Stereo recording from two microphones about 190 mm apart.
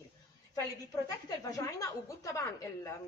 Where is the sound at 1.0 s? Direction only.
20° left (ahead or behind).